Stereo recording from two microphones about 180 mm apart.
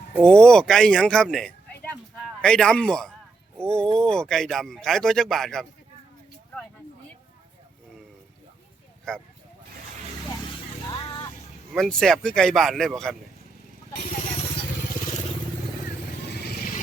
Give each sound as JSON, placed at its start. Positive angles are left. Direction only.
{"t": 0.2, "sound": "speech", "side_deg": 5}
{"t": 10.8, "sound": "music", "side_deg": 25}
{"t": 11.7, "sound": "speech", "side_deg": 5}